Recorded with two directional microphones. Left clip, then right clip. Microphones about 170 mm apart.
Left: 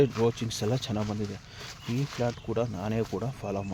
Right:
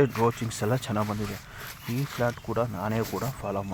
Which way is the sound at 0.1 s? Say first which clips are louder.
Right 2 dB; 25° right (ahead or behind).